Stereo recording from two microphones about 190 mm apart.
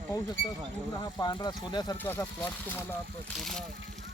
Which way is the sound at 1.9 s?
10° left (ahead or behind).